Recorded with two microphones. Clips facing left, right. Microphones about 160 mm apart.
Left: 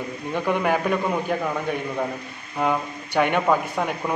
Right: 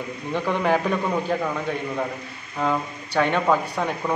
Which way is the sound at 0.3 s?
10° left (ahead or behind).